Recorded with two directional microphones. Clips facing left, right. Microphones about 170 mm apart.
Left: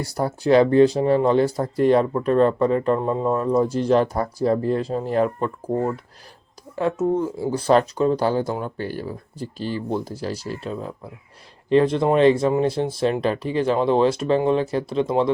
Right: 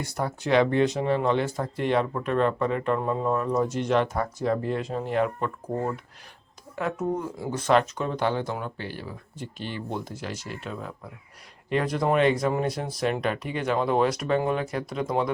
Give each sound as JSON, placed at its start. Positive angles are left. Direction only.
{"t": 0.0, "sound": "speech", "side_deg": 35}